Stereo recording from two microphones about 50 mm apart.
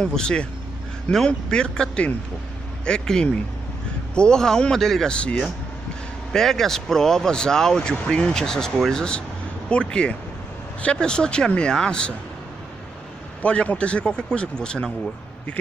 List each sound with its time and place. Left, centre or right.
0.0 s speech: centre
6.3 s speech: centre
9.7 s a man's voice: left
13.4 s a man's voice: left